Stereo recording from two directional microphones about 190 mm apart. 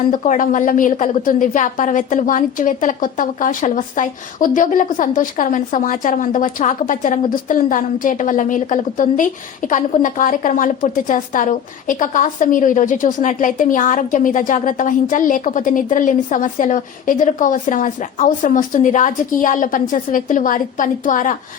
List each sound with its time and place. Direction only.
0.1 s a woman's voice: 45° left (ahead or behind)